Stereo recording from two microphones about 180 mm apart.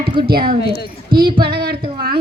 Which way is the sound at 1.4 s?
60° right (ahead or behind).